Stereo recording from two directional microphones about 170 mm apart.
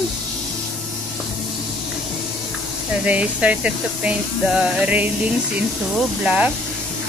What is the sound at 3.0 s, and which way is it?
Speech, 10° right (ahead or behind).